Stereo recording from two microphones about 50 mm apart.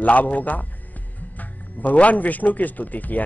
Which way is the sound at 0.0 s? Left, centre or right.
Left.